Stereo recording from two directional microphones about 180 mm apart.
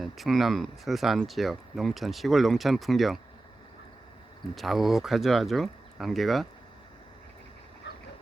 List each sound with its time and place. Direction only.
0.0 s speech: centre (ahead or behind)
4.5 s speech: centre (ahead or behind)
7.9 s dog: 75° left (ahead or behind)